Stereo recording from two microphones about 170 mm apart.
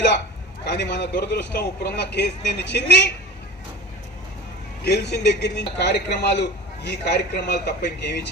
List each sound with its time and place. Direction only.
0.6 s a man's voice: 90° left
4.8 s a man's voice: 70° left (ahead or behind)